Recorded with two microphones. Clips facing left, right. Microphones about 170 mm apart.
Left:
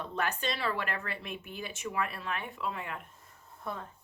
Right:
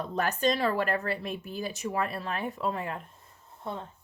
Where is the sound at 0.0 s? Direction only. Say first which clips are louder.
Right 6 dB; 40° right (ahead or behind).